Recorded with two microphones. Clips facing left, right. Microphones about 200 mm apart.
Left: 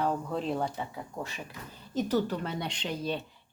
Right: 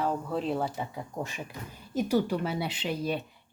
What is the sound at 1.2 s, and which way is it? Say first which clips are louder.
Speech: right 3 dB; 20° right (ahead or behind).